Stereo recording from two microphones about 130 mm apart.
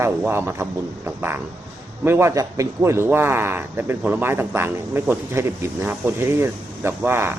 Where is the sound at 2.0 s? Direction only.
20° right (ahead or behind).